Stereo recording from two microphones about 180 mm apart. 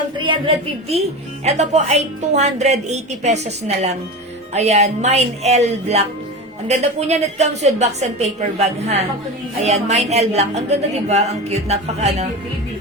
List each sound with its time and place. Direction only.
0.2 s a woman's voice: 30° right (ahead or behind)